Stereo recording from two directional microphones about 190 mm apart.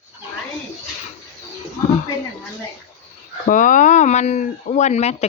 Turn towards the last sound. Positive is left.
turn(degrees=35)  # may be behind; listen again after turning